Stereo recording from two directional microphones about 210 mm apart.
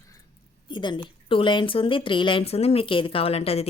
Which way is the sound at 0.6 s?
20° left (ahead or behind).